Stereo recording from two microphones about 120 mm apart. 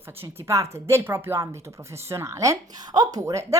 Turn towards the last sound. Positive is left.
turn(degrees=-25)  # may be behind; listen again after turning